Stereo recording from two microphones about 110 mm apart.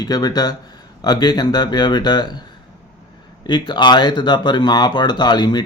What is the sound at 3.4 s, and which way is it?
Speech, 45° left (ahead or behind).